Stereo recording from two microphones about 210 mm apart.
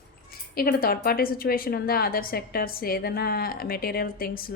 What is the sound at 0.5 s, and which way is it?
A woman's voice, 45° left (ahead or behind).